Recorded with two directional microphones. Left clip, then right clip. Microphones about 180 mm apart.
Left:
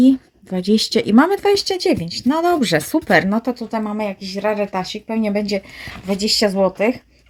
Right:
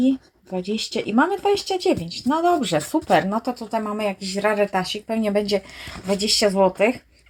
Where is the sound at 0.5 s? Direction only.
55° left (ahead or behind); by 3.5 s 35° left (ahead or behind).